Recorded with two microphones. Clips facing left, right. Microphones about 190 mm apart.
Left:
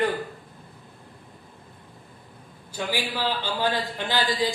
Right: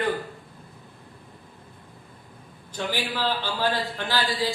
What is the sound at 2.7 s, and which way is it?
A man's voice, 10° left (ahead or behind).